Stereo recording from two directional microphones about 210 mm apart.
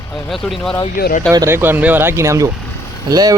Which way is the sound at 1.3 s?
15° right (ahead or behind).